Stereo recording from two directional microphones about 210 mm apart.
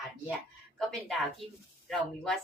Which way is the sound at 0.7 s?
Centre (ahead or behind).